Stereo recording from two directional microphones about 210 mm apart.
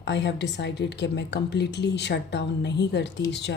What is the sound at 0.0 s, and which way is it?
A woman's voice, 55° left (ahead or behind).